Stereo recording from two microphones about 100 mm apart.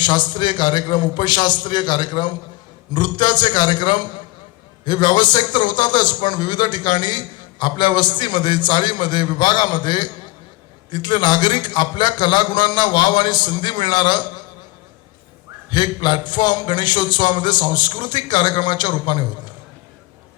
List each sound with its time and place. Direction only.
0.0 s a man's voice: 50° left (ahead or behind)
15.7 s a man's voice: 50° left (ahead or behind)